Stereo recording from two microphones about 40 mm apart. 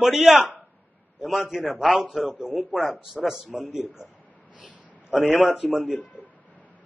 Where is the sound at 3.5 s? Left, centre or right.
Right.